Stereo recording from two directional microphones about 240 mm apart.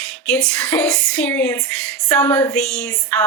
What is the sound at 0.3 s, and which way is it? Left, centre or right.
A woman's voice, centre.